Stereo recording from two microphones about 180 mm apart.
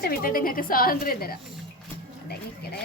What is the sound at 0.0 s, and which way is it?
A woman's voice, 55° left (ahead or behind).